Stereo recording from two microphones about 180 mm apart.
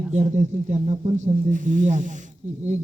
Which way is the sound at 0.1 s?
40° right (ahead or behind).